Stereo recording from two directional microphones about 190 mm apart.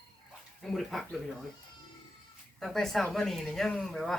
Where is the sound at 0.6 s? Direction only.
Centre (ahead or behind).